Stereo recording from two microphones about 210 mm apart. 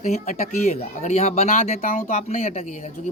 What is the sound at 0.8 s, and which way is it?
A man's voice, 30° left (ahead or behind).